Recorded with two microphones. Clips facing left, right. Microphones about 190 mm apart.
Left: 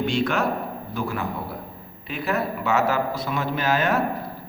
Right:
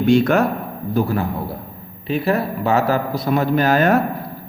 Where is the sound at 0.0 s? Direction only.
45° right (ahead or behind).